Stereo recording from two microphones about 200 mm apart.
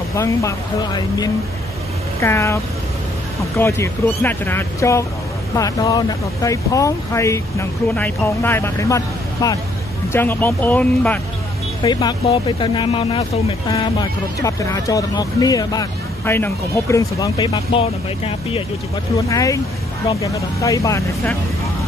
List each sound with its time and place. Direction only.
0.1 s speech: 15° left (ahead or behind)
11.8 s speech: 20° left (ahead or behind)
14.4 s speech: 15° left (ahead or behind)
19.2 s speech: 15° left (ahead or behind)